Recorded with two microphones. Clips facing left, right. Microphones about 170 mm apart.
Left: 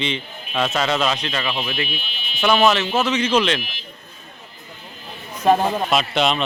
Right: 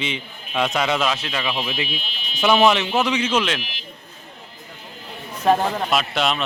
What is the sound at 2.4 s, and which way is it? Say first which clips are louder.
A man's voice: even; 15° right (ahead or behind).